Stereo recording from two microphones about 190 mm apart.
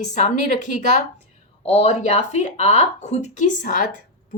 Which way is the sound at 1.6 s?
30° left (ahead or behind).